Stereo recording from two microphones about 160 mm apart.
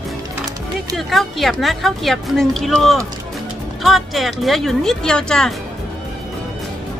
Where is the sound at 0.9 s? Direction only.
Centre (ahead or behind).